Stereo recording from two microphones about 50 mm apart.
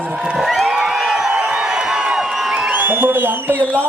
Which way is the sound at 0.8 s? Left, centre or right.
Centre.